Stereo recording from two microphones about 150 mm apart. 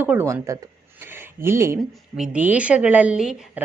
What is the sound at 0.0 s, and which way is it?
Speech, 15° right (ahead or behind).